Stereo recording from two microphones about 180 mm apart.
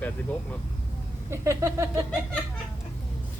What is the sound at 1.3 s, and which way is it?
Speech, 15° right (ahead or behind).